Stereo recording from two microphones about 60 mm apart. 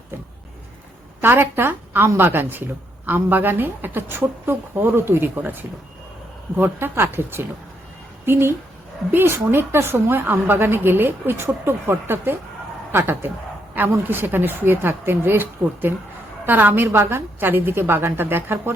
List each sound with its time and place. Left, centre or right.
1.2 s a woman's voice: right